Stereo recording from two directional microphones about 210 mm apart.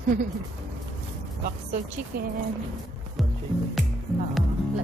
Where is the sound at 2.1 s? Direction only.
45° right (ahead or behind).